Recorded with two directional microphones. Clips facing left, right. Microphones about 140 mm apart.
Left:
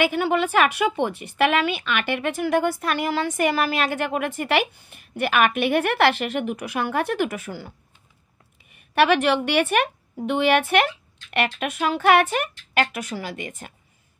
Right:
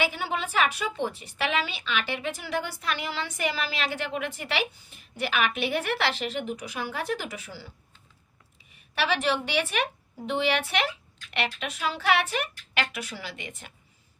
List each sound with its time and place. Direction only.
0.0 s a woman's voice: 60° left (ahead or behind)
8.9 s a woman's voice: 60° left (ahead or behind)